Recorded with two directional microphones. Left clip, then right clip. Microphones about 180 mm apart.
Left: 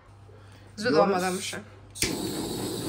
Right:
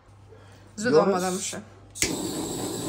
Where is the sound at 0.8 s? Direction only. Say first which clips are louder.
Right 2 dB; 20° right (ahead or behind).